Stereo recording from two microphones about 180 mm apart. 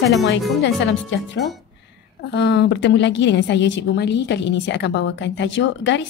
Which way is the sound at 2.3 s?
75° left (ahead or behind).